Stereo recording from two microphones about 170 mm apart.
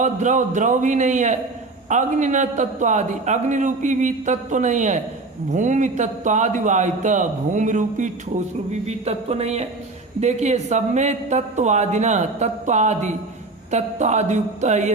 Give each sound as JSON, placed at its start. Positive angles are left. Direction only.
{"t": 0.0, "sound": "a man's voice", "side_deg": -45}
{"t": 8.7, "sound": "a sound", "side_deg": -40}
{"t": 10.2, "sound": "a man's voice", "side_deg": -40}